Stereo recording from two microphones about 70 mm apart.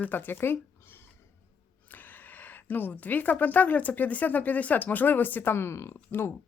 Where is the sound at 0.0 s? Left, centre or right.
Left.